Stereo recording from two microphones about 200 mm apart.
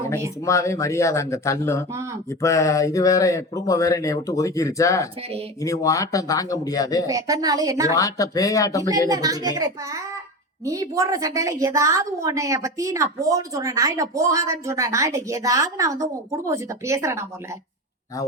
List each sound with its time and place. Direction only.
0.4 s speech: 15° left (ahead or behind)
7.1 s a woman's voice: 15° right (ahead or behind)
7.9 s speech: 15° left (ahead or behind)
9.0 s a woman's voice: 20° right (ahead or behind)